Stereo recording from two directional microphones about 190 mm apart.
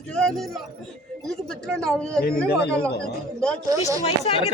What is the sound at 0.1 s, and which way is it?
Speech, 5° left (ahead or behind).